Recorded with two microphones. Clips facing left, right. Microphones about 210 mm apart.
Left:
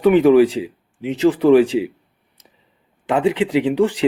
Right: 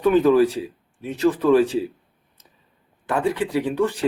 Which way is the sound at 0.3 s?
15° left (ahead or behind).